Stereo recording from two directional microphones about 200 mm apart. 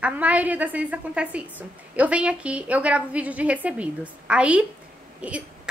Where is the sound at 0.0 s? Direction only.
5° right (ahead or behind).